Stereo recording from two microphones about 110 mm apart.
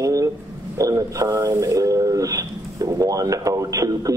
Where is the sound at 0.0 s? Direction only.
30° right (ahead or behind).